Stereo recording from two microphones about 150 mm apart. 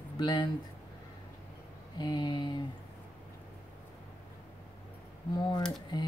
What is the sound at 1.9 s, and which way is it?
Speech, 30° left (ahead or behind).